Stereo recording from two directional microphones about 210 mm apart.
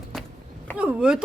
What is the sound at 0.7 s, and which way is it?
Speech, 5° right (ahead or behind).